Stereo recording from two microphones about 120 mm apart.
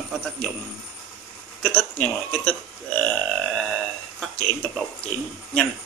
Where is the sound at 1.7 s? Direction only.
5° left (ahead or behind).